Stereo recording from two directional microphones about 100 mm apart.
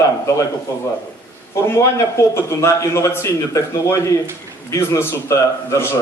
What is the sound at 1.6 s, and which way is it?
A man's voice, 30° left (ahead or behind).